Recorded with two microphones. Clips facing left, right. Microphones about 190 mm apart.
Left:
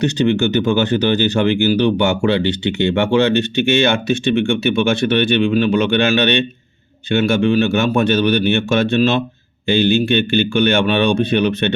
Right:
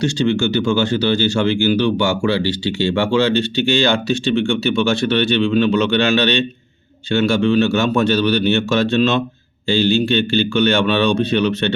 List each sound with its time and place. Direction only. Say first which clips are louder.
0.3 s speech: left 1 dB; 20° left (ahead or behind)
5.5 s a man's voice: even; 55° left (ahead or behind)
6.1 s speech: left 1 dB; 15° left (ahead or behind)